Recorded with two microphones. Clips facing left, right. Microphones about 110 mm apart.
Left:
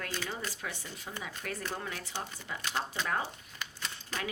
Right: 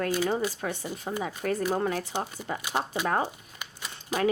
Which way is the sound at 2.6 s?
10° right (ahead or behind).